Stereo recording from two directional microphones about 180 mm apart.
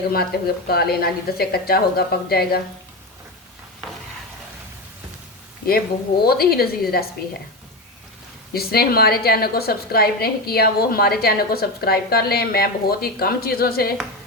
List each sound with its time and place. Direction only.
0.1 s a woman's voice: 60° left (ahead or behind)
6.2 s a woman's voice: 60° left (ahead or behind)
8.5 s a woman's voice: 60° left (ahead or behind)